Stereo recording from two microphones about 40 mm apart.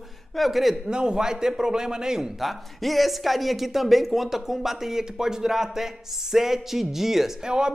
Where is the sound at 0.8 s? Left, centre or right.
Centre.